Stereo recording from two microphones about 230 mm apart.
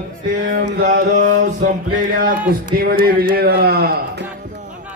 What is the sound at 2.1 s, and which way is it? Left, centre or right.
A man's voice, right.